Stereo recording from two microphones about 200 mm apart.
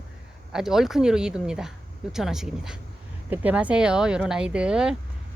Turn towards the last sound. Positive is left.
turn(degrees=-5)  # may be behind; listen again after turning